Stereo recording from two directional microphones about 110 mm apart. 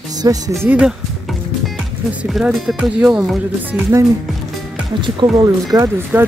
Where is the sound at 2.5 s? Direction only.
Centre (ahead or behind).